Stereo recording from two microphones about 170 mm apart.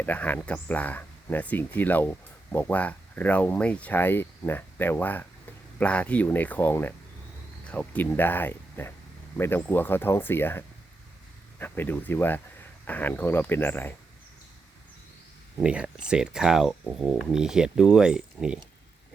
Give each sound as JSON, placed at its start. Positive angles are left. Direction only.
{"t": 0.0, "sound": "speech", "side_deg": 10}
{"t": 11.6, "sound": "speech", "side_deg": 10}
{"t": 15.6, "sound": "speech", "side_deg": -5}